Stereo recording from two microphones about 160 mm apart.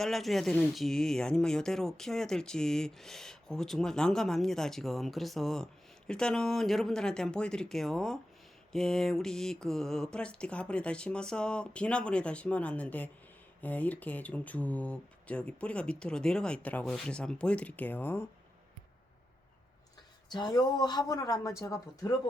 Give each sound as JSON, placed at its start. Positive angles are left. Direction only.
{"t": 0.0, "sound": "speech", "side_deg": 0}
{"t": 20.3, "sound": "speech", "side_deg": 25}